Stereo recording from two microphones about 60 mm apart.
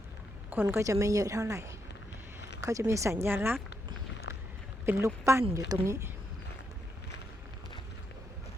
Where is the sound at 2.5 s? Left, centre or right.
Right.